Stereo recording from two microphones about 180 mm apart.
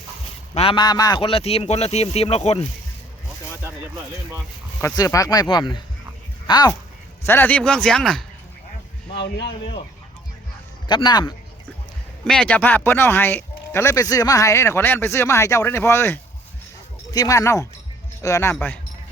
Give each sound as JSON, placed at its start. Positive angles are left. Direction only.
{"t": 0.5, "sound": "a man's voice", "side_deg": 30}
{"t": 4.9, "sound": "speech", "side_deg": 20}
{"t": 7.3, "sound": "speech", "side_deg": 10}
{"t": 9.1, "sound": "a man's voice", "side_deg": 75}
{"t": 10.8, "sound": "speech", "side_deg": 25}
{"t": 12.2, "sound": "speech", "side_deg": 5}